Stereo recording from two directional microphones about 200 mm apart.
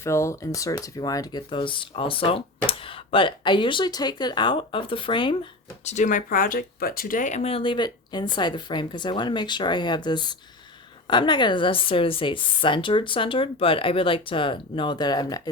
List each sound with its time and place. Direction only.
0.0 s speech: 15° left (ahead or behind)